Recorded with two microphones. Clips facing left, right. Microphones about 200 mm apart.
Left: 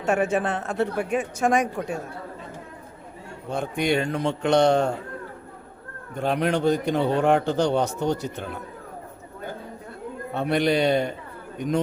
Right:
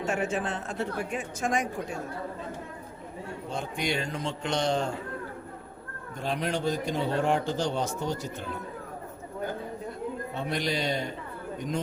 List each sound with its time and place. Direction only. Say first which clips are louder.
0.0 s a man's voice: left 6 dB; 60° left (ahead or behind)
3.5 s a man's voice: left 8 dB; 60° left (ahead or behind)
6.1 s a man's voice: left 7 dB; 60° left (ahead or behind)
10.3 s a man's voice: left 10 dB; 60° left (ahead or behind)